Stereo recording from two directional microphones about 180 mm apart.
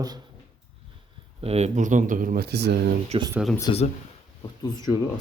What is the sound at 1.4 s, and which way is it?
Speech, 35° right (ahead or behind).